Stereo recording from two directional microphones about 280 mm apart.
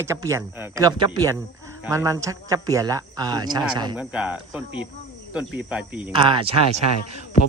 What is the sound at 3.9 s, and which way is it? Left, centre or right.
Cricket, centre.